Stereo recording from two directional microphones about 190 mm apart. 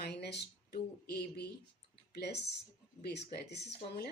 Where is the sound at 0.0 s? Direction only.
60° left (ahead or behind).